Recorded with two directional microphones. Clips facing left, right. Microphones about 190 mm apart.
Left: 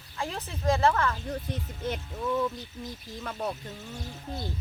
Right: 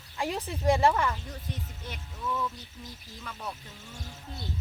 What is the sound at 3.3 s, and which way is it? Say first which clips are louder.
Speech: left 6 dB; 55° left (ahead or behind).